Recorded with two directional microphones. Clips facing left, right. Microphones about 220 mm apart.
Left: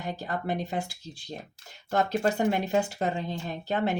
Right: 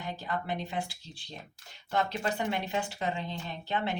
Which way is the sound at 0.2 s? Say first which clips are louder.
Left 3 dB; 40° left (ahead or behind).